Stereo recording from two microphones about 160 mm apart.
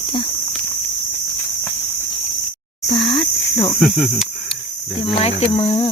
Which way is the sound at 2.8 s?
35° left (ahead or behind).